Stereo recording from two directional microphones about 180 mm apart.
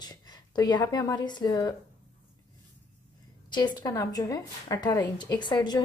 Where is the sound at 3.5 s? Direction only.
25° left (ahead or behind).